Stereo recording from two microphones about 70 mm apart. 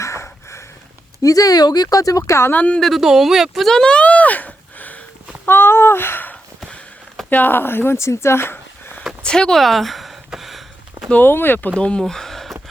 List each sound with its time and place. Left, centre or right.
0.0 s sniff: left
1.2 s speech: left
2.5 s speech: left
3.0 s speech: centre; by 5.0 s left
5.5 s a sound: left
7.3 s speech: left
9.2 s a sound: centre
11.1 s speech: left
11.8 s speech: centre